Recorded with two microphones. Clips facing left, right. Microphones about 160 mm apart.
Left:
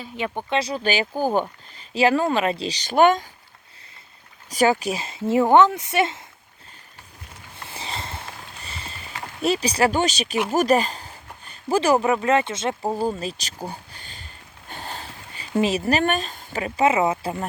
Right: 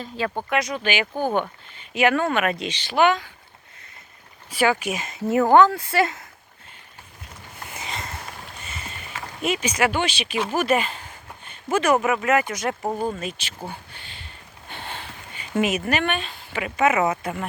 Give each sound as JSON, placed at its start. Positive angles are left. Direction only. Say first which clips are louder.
{"t": 0.2, "sound": "speech", "louder": "right 1 dB", "side_deg": 20}
{"t": 0.5, "sound": "speech", "louder": "left 2 dB", "side_deg": 30}
{"t": 1.1, "sound": "speech", "louder": "left 1 dB", "side_deg": 10}
{"t": 1.9, "sound": "speech", "louder": "left 1 dB", "side_deg": 30}
{"t": 4.4, "sound": "speech", "louder": "left 2 dB", "side_deg": 40}
{"t": 7.7, "sound": "a sound", "louder": "left 1 dB", "side_deg": 30}
{"t": 9.4, "sound": "speech", "louder": "left 2 dB", "side_deg": 35}
{"t": 10.5, "sound": "a sound", "louder": "left 3 dB", "side_deg": 40}
{"t": 12.0, "sound": "speech", "louder": "left 1 dB", "side_deg": 30}
{"t": 13.1, "sound": "speech", "louder": "left 1 dB", "side_deg": 35}
{"t": 13.7, "sound": "a sound", "louder": "left 1 dB", "side_deg": 40}
{"t": 15.6, "sound": "speech", "louder": "left 3 dB", "side_deg": 35}